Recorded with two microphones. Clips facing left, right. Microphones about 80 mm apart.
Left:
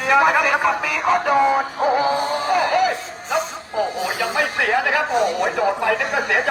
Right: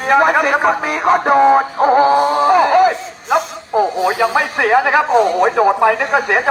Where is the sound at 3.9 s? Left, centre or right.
Right.